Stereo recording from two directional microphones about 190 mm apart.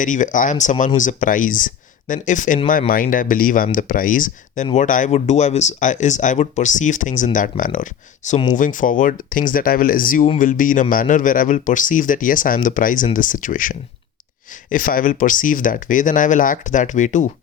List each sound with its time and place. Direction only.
0.0 s speech: 40° left (ahead or behind)